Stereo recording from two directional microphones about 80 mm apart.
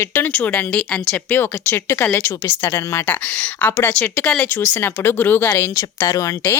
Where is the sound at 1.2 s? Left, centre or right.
Left.